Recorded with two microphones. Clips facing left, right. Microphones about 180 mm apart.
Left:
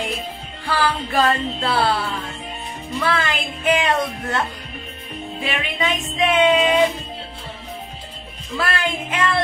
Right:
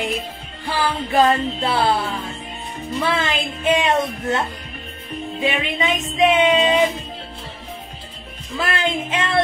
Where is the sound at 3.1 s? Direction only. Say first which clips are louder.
Even; 25° right (ahead or behind).